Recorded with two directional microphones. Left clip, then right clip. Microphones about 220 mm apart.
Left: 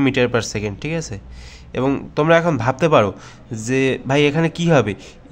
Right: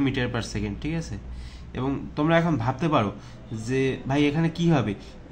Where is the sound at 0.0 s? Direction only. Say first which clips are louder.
Left 10 dB; 40° left (ahead or behind).